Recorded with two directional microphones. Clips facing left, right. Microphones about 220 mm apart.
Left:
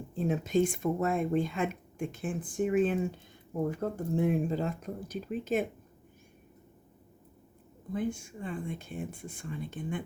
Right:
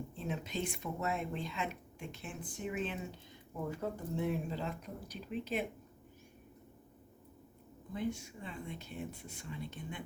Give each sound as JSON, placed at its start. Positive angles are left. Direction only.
{"t": 0.2, "sound": "speech", "side_deg": 45}
{"t": 7.9, "sound": "speech", "side_deg": 50}